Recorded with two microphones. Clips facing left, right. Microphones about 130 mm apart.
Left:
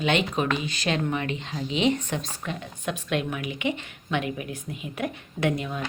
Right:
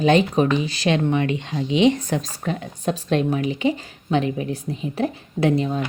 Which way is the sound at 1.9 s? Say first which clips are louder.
Right 5 dB; 35° right (ahead or behind).